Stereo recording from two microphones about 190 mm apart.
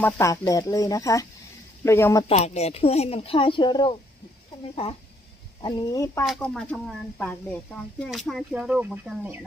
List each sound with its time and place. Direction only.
0.0 s speech: 15° left (ahead or behind)
2.2 s speech: 35° left (ahead or behind); by 6.2 s 20° left (ahead or behind)
6.2 s speech: centre (ahead or behind)